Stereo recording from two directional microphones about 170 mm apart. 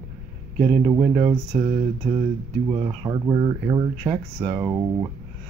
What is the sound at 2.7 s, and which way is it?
Speech, 20° right (ahead or behind).